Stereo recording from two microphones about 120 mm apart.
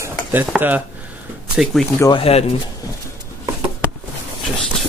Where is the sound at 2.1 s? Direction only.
55° left (ahead or behind).